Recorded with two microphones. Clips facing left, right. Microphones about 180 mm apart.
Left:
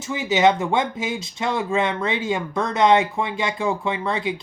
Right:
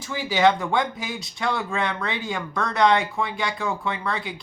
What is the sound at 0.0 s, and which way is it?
Speech, 20° left (ahead or behind).